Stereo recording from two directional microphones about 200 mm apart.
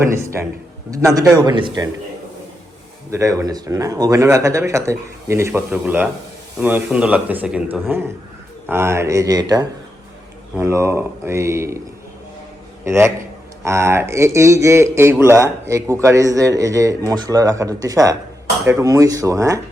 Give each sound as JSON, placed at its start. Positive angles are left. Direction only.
{"t": 0.0, "sound": "speech", "side_deg": -15}
{"t": 3.1, "sound": "speech", "side_deg": -15}
{"t": 12.8, "sound": "a man's voice", "side_deg": -15}